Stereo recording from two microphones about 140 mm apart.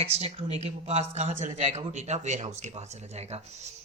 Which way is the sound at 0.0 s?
45° right (ahead or behind).